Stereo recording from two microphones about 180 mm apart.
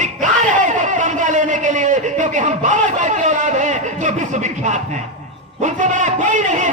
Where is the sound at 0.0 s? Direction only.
45° right (ahead or behind).